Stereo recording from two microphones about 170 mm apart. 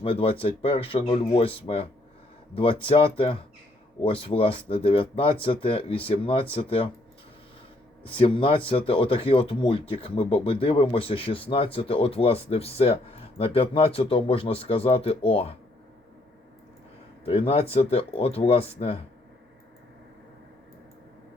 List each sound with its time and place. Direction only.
0.0 s speech: 35° left (ahead or behind)
8.0 s speech: 30° left (ahead or behind)
17.2 s speech: 35° left (ahead or behind)